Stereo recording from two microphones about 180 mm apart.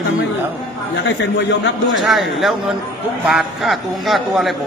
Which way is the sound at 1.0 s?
90° left.